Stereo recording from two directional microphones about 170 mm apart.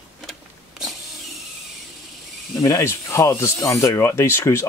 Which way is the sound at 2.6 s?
15° left (ahead or behind).